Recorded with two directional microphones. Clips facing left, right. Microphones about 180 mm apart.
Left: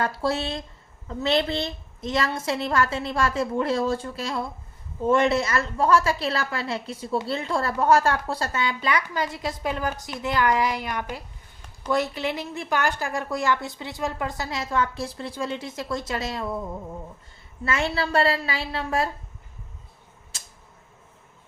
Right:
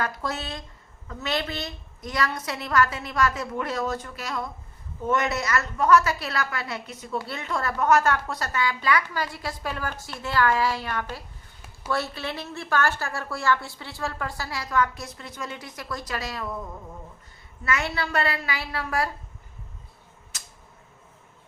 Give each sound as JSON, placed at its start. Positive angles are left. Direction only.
{"t": 0.0, "sound": "a woman's voice", "side_deg": 30}
{"t": 17.7, "sound": "a woman's voice", "side_deg": 25}
{"t": 20.3, "sound": "a sound", "side_deg": 30}